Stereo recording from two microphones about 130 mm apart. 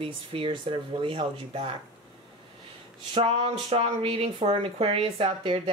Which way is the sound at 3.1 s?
50° right (ahead or behind).